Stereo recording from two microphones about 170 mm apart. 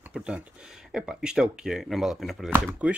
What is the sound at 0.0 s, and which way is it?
Speech, 5° right (ahead or behind).